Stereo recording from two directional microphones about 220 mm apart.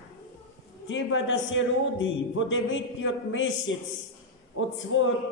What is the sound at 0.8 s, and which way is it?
A man's voice, 60° left (ahead or behind).